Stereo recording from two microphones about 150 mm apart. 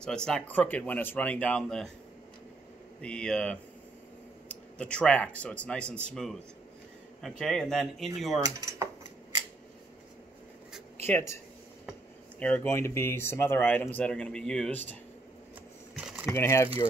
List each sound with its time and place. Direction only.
0.0 s speech: 5° left (ahead or behind)
3.0 s speech: 5° left (ahead or behind)
8.4 s speech: 25° right (ahead or behind)
11.1 s speech: 15° left (ahead or behind)
16.0 s a sound: 10° right (ahead or behind)
16.3 s speech: 20° left (ahead or behind)